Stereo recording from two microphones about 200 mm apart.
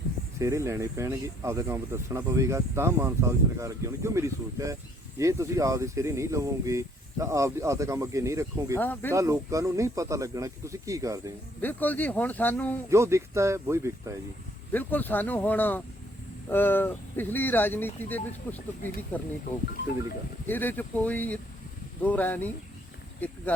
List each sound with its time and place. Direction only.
0.3 s speech: 15° right (ahead or behind)
8.8 s speech: 10° left (ahead or behind)
9.1 s speech: 15° right (ahead or behind)
11.6 s speech: 10° left (ahead or behind)
12.9 s speech: 15° right (ahead or behind)
14.7 s speech: 10° left (ahead or behind)
20.5 s speech: 10° left (ahead or behind)